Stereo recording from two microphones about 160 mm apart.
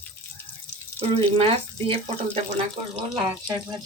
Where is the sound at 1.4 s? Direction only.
35° right (ahead or behind).